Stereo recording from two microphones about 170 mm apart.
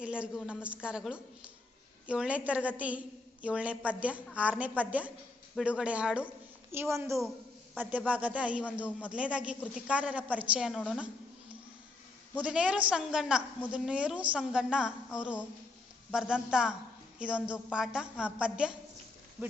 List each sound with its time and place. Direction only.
0.0 s a woman's voice: 5° right (ahead or behind)
12.3 s a man's voice: 5° right (ahead or behind)